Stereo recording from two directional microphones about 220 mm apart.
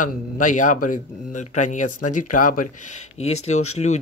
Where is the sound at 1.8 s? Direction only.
90° left.